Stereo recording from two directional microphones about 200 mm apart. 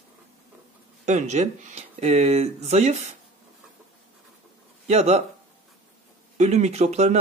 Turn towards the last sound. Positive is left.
turn(degrees=-30)  # may be behind; listen again after turning